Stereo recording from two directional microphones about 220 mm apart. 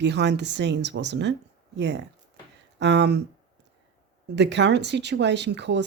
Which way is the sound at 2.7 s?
50° right (ahead or behind).